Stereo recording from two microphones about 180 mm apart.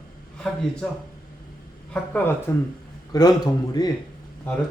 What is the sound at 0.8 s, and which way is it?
Speech, 5° left (ahead or behind).